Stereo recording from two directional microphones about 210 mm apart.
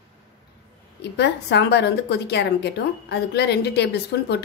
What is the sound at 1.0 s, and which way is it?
A woman's voice, 55° left (ahead or behind).